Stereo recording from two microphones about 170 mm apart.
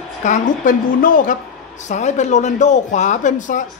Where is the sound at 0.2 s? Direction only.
50° left (ahead or behind).